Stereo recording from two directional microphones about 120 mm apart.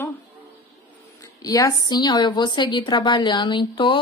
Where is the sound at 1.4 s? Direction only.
30° left (ahead or behind).